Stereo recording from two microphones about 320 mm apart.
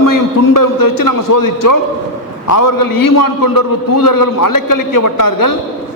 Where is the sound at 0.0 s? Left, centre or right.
Left.